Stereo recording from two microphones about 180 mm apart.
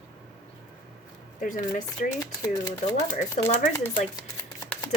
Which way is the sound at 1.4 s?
45° left (ahead or behind).